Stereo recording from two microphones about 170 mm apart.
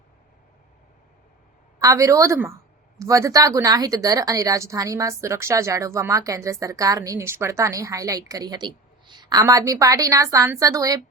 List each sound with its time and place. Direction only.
1.8 s a woman's voice: 20° right (ahead or behind)